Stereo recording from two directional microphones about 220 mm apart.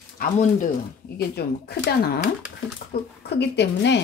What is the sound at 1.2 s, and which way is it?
Speech, 45° left (ahead or behind).